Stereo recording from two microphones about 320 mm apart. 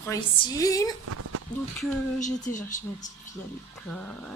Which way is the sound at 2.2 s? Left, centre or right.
Left.